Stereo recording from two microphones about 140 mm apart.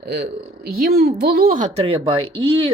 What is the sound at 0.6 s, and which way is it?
Speech, 90° right.